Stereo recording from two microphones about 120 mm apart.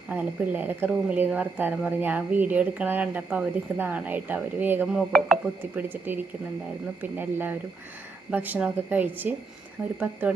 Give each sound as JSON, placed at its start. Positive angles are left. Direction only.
{"t": 0.1, "sound": "a woman's voice", "side_deg": -15}
{"t": 4.9, "sound": "speech", "side_deg": 0}
{"t": 5.7, "sound": "a woman's voice", "side_deg": -15}